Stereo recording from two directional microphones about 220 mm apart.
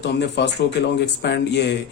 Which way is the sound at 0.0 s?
50° left (ahead or behind).